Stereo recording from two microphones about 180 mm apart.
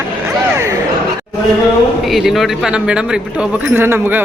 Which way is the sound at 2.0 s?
Centre (ahead or behind).